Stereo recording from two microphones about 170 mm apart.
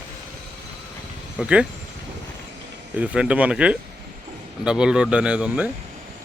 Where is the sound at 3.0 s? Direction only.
5° right (ahead or behind).